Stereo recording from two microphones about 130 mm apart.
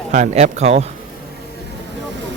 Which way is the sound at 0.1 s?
65° right (ahead or behind).